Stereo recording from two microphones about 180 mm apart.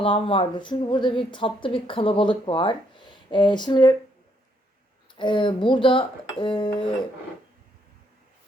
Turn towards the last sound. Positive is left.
turn(degrees=30)  # may be behind; listen again after turning